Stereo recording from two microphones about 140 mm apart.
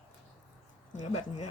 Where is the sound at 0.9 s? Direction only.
55° left (ahead or behind).